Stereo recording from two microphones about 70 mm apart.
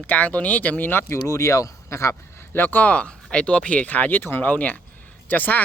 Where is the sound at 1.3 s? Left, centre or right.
Left.